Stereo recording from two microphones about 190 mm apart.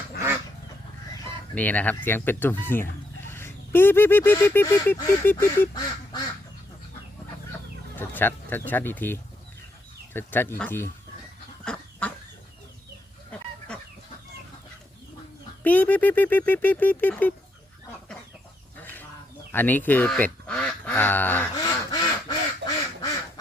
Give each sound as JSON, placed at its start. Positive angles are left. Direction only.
{"t": 1.5, "sound": "speech", "side_deg": 10}
{"t": 3.2, "sound": "goose", "side_deg": 10}
{"t": 7.9, "sound": "speech", "side_deg": 10}
{"t": 11.6, "sound": "goose", "side_deg": 5}
{"t": 15.6, "sound": "speech", "side_deg": 10}
{"t": 18.8, "sound": "duck", "side_deg": 10}
{"t": 19.5, "sound": "speech", "side_deg": 10}
{"t": 21.5, "sound": "quack", "side_deg": 20}